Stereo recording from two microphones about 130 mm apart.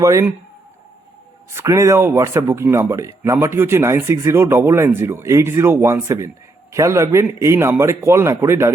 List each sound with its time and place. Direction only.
0.0 s speech: 25° right (ahead or behind)
1.5 s speech: 20° right (ahead or behind)